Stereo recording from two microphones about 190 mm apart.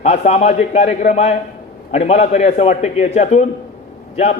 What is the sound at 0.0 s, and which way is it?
A man's voice, 35° left (ahead or behind).